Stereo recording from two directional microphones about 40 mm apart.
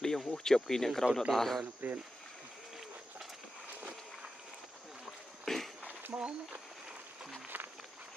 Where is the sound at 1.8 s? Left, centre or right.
Right.